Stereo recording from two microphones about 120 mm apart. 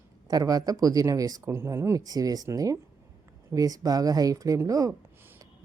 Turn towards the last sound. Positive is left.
turn(degrees=-30)  # may be behind; listen again after turning